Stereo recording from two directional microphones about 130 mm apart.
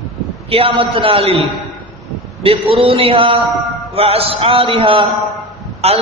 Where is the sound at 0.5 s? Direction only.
40° right (ahead or behind).